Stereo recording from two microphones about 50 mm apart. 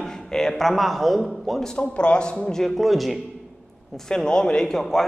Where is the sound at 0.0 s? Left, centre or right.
Centre.